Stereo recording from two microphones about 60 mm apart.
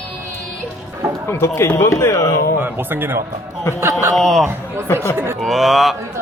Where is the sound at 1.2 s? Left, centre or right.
Left.